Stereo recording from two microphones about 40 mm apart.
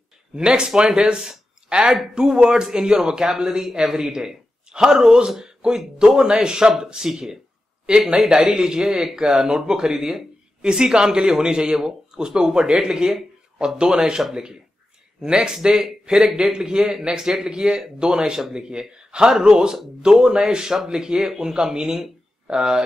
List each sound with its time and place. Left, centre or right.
0.4 s a man's voice: right
5.4 s a sound: right
5.9 s speech: centre